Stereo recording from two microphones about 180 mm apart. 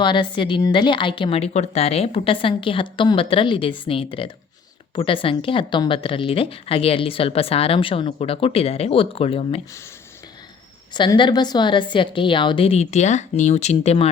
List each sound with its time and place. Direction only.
0.0 s speech: 25° left (ahead or behind)
10.9 s speech: 25° left (ahead or behind)